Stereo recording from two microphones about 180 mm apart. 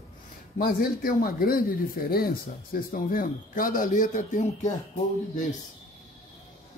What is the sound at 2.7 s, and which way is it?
Speech, 50° left (ahead or behind).